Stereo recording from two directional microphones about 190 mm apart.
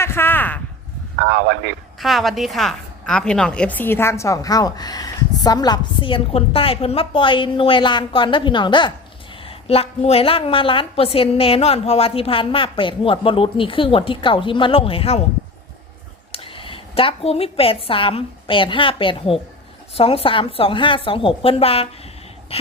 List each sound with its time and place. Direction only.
0.0 s speech: 10° left (ahead or behind)
1.2 s a man's voice: 65° right (ahead or behind)
2.0 s a woman's voice: centre (ahead or behind); by 15.2 s 30° left (ahead or behind)
16.3 s a woman's voice: 30° left (ahead or behind)